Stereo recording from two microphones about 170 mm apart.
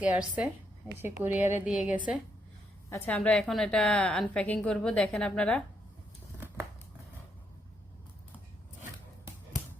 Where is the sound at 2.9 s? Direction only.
10° left (ahead or behind).